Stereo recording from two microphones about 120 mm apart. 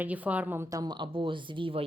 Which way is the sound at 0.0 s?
10° right (ahead or behind).